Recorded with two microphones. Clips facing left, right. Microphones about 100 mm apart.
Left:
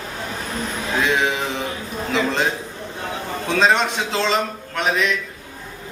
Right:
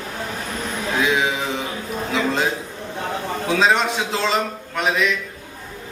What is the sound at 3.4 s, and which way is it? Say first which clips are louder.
A man's voice: left 1 dB; 5° right (ahead or behind).